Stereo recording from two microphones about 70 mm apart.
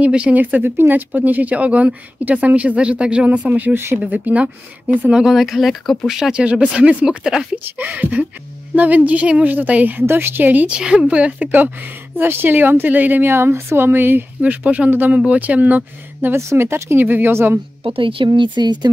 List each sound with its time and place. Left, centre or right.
0.0 s a woman's voice: centre
3.7 s speech: right
4.0 s a woman's voice: centre
5.0 s speech: centre
7.7 s a woman's voice: right
10.8 s a woman's voice: centre
16.3 s speech: right
18.6 s speech: right